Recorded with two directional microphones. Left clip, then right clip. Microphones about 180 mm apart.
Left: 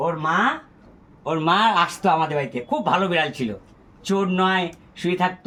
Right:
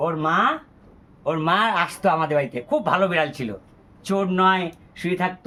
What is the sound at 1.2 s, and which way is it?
A man's voice, 15° right (ahead or behind).